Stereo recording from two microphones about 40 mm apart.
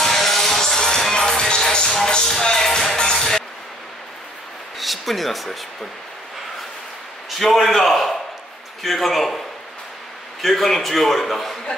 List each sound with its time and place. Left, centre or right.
0.0 s music: centre
4.7 s speech: centre
7.2 s a man's voice: centre
10.4 s a man's voice: centre